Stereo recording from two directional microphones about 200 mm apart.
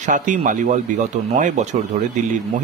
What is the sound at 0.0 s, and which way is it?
Speech, 40° right (ahead or behind).